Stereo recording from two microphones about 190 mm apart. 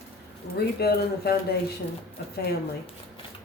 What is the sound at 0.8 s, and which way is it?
Speech, 55° left (ahead or behind).